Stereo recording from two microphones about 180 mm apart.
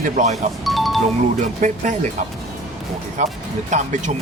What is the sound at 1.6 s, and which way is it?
Speech, 45° right (ahead or behind).